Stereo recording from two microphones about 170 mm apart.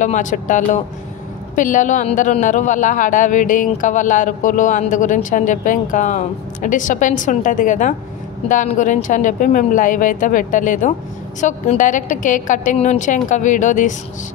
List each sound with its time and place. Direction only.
0.0 s a man's voice: 45° left (ahead or behind)